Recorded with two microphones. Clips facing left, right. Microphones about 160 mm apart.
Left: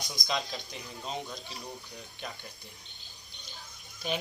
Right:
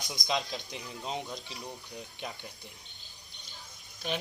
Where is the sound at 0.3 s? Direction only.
15° right (ahead or behind).